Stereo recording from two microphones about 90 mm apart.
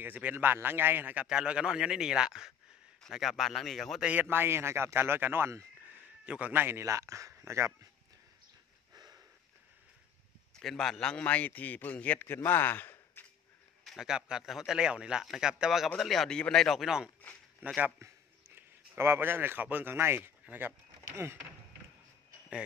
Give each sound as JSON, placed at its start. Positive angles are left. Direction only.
{"t": 0.0, "sound": "a man's voice", "side_deg": -20}
{"t": 1.2, "sound": "a man's voice", "side_deg": -10}
{"t": 4.0, "sound": "a man's voice", "side_deg": -20}
{"t": 5.9, "sound": "speech", "side_deg": -15}
{"t": 8.9, "sound": "a sound", "side_deg": -45}
{"t": 10.5, "sound": "a man's voice", "side_deg": 5}
{"t": 13.8, "sound": "a man's voice", "side_deg": -5}
{"t": 17.2, "sound": "a sound", "side_deg": 15}
{"t": 17.9, "sound": "speech", "side_deg": -25}